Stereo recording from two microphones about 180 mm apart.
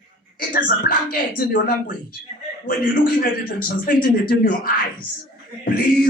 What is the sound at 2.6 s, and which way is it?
Speech, 50° left (ahead or behind).